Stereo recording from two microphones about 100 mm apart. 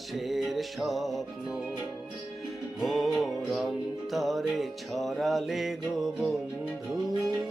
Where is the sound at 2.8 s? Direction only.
Centre (ahead or behind).